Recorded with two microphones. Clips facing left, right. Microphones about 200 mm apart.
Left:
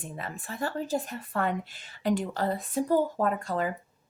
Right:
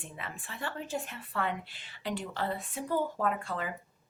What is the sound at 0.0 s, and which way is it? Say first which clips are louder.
A woman's voice: left 5 dB; 40° left (ahead or behind).